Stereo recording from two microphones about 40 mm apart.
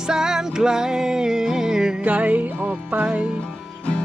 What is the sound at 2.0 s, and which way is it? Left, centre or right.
Music, right.